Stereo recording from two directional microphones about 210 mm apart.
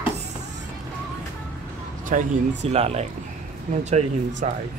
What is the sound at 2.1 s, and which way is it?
Speech, 40° right (ahead or behind).